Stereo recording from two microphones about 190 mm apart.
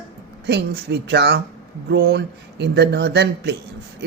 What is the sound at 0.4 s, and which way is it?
Speech, 60° right (ahead or behind).